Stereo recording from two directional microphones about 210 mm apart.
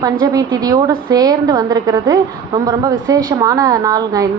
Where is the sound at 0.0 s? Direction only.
15° right (ahead or behind).